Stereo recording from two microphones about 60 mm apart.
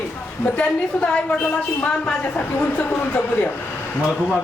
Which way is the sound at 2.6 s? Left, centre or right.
Left.